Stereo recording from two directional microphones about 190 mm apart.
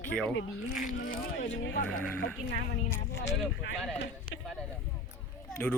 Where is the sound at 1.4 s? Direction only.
70° left (ahead or behind).